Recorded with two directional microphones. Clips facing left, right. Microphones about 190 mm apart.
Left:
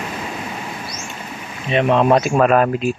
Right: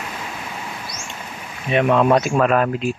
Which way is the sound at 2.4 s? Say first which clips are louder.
Left 3 dB; 40° left (ahead or behind).